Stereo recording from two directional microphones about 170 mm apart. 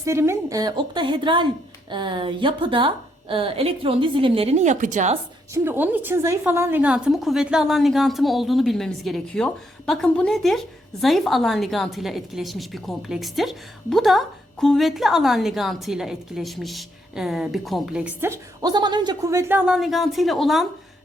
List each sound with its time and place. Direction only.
0.0 s a woman's voice: 15° right (ahead or behind); by 5.1 s 45° right (ahead or behind)
5.6 s a woman's voice: 10° right (ahead or behind)